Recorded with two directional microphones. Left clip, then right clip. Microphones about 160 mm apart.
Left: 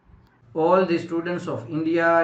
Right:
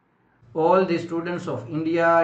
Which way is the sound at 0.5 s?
Centre (ahead or behind).